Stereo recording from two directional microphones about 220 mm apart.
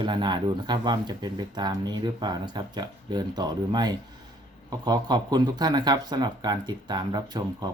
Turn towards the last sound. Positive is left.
turn(degrees=-20)  # may be behind; listen again after turning